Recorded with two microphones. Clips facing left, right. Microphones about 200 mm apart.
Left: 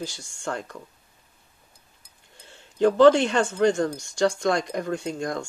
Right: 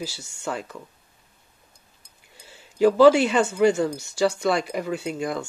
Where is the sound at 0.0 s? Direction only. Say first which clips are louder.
Right 1 dB; 5° right (ahead or behind).